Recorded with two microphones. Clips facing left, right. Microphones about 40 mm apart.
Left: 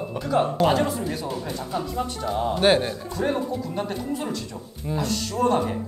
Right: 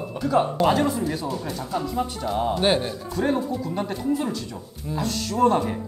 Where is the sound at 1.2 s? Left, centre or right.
Centre.